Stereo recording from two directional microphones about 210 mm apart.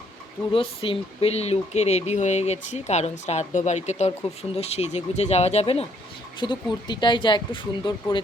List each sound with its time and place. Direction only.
0.5 s speech: 25° left (ahead or behind)